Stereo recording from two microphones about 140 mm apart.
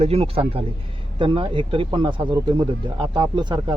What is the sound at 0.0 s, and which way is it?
Speech, 45° right (ahead or behind).